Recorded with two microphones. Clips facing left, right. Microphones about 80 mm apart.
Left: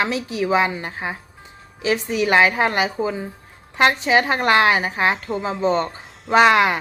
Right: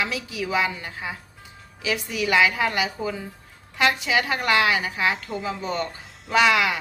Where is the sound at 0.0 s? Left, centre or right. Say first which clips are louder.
Left 6 dB; left.